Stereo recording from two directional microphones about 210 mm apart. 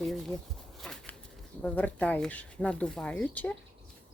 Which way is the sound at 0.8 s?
5° left (ahead or behind).